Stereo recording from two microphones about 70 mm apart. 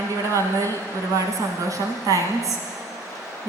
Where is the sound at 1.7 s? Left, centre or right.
Right.